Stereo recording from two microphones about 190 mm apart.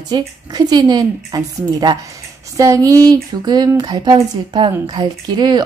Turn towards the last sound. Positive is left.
turn(degrees=-20)  # may be behind; listen again after turning